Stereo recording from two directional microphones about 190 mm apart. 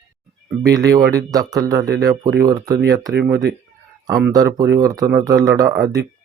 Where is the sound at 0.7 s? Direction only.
15° right (ahead or behind).